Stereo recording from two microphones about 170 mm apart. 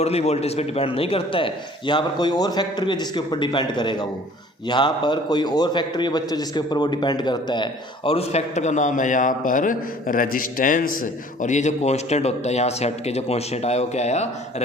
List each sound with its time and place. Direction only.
0.0 s a man's voice: 40° left (ahead or behind)